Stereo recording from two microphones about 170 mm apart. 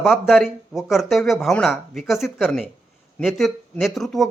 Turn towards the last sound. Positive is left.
turn(degrees=0)  # may be behind; listen again after turning